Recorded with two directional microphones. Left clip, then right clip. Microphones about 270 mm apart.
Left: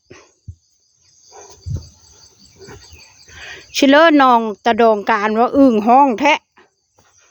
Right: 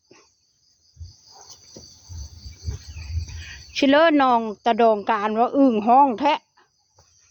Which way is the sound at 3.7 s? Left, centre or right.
Left.